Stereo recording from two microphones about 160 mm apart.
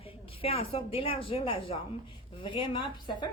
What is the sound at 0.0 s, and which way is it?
A woman's voice, 35° left (ahead or behind).